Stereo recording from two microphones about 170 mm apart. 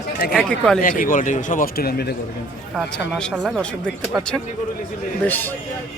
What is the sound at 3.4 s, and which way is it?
Speech, centre (ahead or behind).